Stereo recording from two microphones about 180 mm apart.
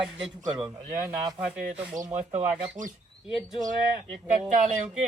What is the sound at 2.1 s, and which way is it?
Speech, 35° right (ahead or behind).